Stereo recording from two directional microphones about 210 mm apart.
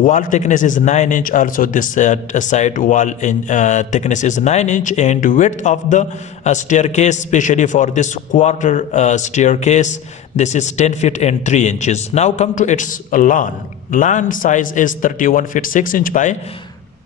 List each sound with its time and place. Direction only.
0.0 s a man's voice: 40° left (ahead or behind)